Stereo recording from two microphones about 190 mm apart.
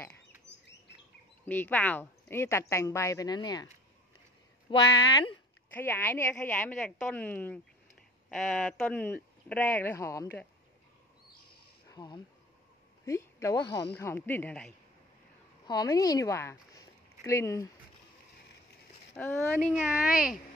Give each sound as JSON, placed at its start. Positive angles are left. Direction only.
{"t": 1.4, "sound": "a woman's voice", "side_deg": 10}
{"t": 4.6, "sound": "a woman's voice", "side_deg": 15}
{"t": 11.9, "sound": "a woman's voice", "side_deg": 20}
{"t": 15.6, "sound": "speech", "side_deg": 20}
{"t": 19.1, "sound": "speech", "side_deg": 10}
{"t": 19.7, "sound": "speech", "side_deg": -5}